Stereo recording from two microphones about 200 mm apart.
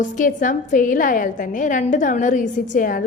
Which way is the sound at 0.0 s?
40° left (ahead or behind).